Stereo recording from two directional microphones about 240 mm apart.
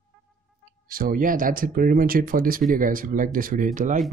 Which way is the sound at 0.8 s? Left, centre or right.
Right.